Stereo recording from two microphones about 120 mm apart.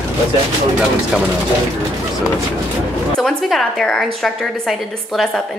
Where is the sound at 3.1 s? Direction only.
5° left (ahead or behind).